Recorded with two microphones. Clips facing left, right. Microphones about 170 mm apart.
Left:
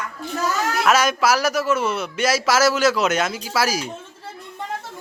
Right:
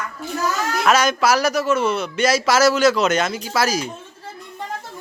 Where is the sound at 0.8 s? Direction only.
5° left (ahead or behind).